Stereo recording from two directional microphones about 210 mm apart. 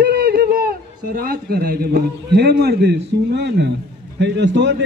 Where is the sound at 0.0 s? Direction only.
45° right (ahead or behind).